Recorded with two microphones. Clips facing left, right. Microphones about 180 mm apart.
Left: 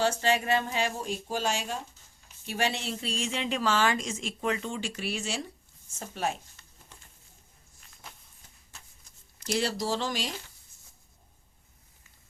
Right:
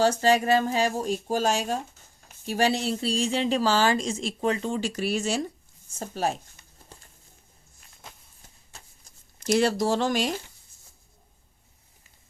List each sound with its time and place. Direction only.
0.0 s speech: 40° right (ahead or behind)
6.9 s bird: 35° right (ahead or behind)
9.5 s speech: 50° right (ahead or behind)